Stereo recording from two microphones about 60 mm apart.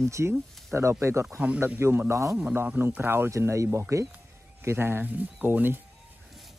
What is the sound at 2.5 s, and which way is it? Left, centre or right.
Speech, right.